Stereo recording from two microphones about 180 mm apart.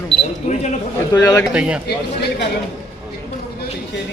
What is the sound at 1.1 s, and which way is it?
Speech, 20° left (ahead or behind).